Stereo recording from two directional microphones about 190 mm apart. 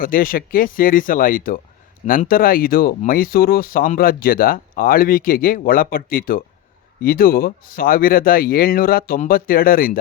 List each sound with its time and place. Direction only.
0.0 s speech: 50° left (ahead or behind)